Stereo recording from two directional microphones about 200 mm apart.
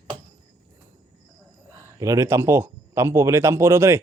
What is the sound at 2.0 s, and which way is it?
Speech, 15° right (ahead or behind).